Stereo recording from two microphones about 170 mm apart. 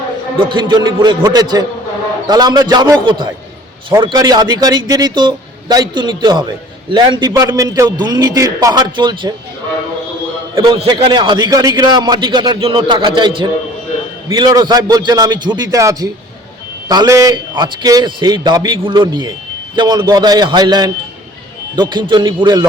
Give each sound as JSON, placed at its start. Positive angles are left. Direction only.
{"t": 0.3, "sound": "a man's voice", "side_deg": -25}
{"t": 10.6, "sound": "a man's voice", "side_deg": -30}